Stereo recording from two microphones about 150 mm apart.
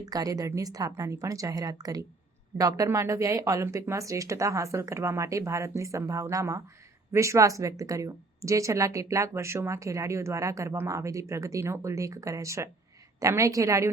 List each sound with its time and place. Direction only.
0.0 s a woman's voice: 25° right (ahead or behind)